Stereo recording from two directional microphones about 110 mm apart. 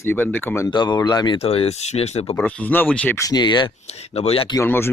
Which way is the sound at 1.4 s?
65° left (ahead or behind).